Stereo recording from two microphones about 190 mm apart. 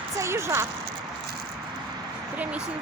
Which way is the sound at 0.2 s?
15° right (ahead or behind).